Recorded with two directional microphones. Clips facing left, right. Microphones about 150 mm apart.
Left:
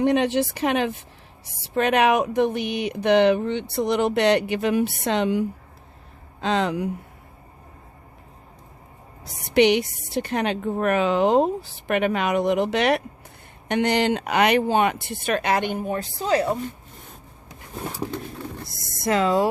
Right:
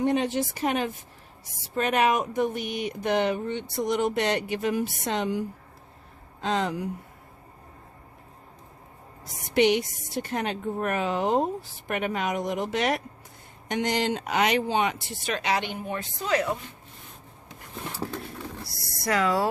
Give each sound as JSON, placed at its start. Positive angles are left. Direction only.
{"t": 0.0, "sound": "speech", "side_deg": 70}
{"t": 9.2, "sound": "speech", "side_deg": 70}
{"t": 17.9, "sound": "vehicle", "side_deg": 15}
{"t": 18.6, "sound": "speech", "side_deg": 20}